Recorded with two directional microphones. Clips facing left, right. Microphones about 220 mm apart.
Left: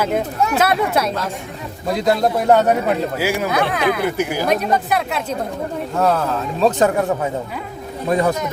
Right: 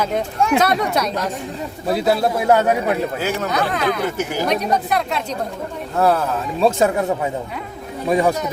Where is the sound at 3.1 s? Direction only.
10° left (ahead or behind).